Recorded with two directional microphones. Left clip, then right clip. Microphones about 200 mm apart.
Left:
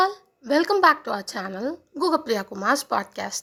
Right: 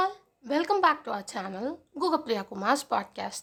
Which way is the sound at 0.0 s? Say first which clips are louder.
Left 6 dB; 20° left (ahead or behind).